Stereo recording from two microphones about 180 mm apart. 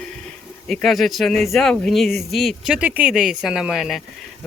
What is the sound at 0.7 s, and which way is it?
Speech, centre (ahead or behind).